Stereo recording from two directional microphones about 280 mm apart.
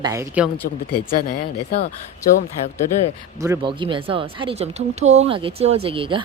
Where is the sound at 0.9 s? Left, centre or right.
Left.